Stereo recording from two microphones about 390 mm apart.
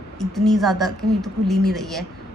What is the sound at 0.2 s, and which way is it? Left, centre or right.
A woman's voice, centre.